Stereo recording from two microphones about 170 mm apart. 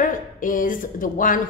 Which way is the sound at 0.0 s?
55° left (ahead or behind).